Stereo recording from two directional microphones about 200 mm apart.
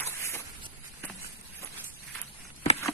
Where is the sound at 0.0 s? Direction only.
10° left (ahead or behind).